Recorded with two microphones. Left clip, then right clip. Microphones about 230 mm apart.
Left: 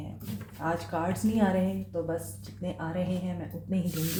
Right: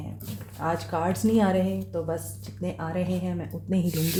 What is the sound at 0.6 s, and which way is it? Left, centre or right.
Speech, right.